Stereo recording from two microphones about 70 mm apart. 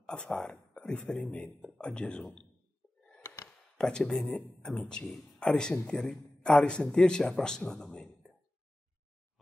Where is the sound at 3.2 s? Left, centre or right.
Left.